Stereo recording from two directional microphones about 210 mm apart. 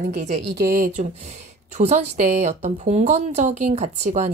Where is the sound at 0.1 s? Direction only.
35° right (ahead or behind).